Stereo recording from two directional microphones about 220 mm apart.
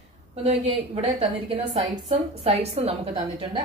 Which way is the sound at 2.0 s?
30° right (ahead or behind).